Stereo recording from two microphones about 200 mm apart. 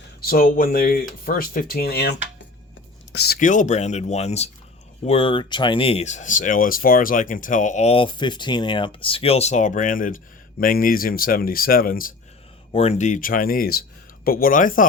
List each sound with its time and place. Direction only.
0.2 s speech: 45° left (ahead or behind)
3.3 s speech: 40° left (ahead or behind)
12.7 s speech: 30° left (ahead or behind)